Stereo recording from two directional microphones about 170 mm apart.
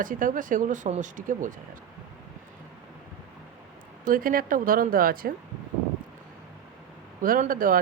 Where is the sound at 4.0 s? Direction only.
55° right (ahead or behind).